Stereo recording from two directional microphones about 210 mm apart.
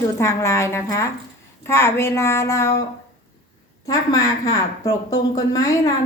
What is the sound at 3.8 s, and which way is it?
A woman's voice, 15° left (ahead or behind).